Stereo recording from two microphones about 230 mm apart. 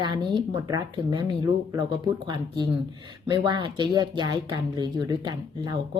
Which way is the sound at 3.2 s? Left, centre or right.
Centre.